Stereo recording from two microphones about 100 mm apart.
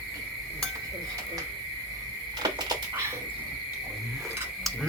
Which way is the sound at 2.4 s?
40° right (ahead or behind).